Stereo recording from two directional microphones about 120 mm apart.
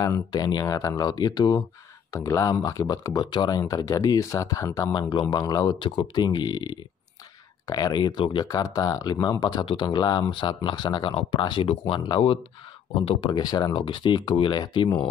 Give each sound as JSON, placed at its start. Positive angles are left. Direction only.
{"t": 0.0, "sound": "speech", "side_deg": 30}